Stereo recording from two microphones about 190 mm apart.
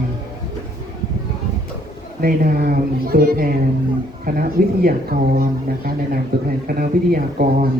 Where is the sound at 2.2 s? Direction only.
50° right (ahead or behind).